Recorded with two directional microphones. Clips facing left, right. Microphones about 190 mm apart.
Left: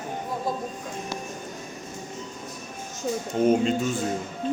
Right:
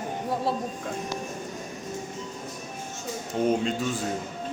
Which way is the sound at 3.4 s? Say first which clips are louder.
Left 4 dB; 5° left (ahead or behind).